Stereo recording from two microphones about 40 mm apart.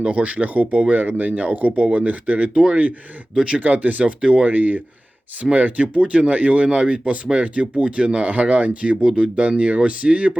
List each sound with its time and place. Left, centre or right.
0.0 s speech: right
3.3 s speech: right
3.6 s speech: right
4.4 s speech: right
9.0 s speech: right
9.6 s speech: right